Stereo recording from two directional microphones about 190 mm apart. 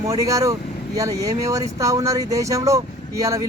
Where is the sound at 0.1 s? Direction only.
15° right (ahead or behind).